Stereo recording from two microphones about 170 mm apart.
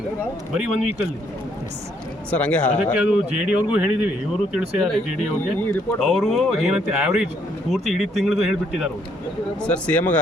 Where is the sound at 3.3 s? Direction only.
5° right (ahead or behind).